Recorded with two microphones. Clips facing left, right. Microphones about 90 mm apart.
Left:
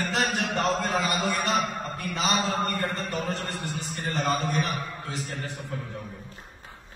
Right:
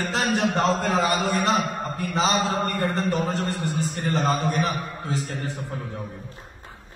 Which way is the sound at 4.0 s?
40° right (ahead or behind).